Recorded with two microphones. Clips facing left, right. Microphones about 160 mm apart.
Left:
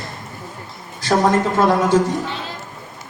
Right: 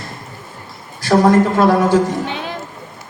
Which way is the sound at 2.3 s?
60° right (ahead or behind).